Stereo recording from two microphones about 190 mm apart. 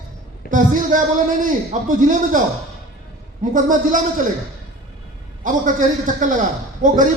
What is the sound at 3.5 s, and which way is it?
Speech, 45° right (ahead or behind).